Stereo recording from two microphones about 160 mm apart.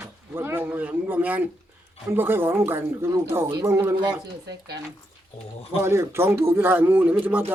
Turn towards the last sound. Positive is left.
turn(degrees=-10)  # may be behind; listen again after turning